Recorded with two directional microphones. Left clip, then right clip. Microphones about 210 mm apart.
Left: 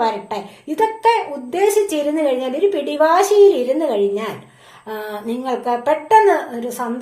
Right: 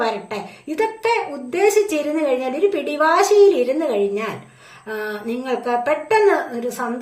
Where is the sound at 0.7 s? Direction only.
10° right (ahead or behind).